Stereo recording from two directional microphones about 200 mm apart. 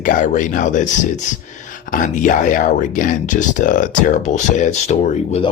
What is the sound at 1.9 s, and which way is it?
Speech, 40° left (ahead or behind).